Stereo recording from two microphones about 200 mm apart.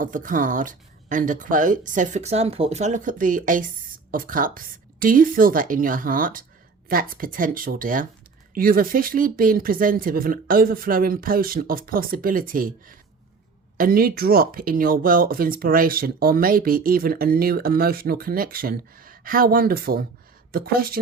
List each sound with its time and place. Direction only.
0.0 s speech: 40° right (ahead or behind)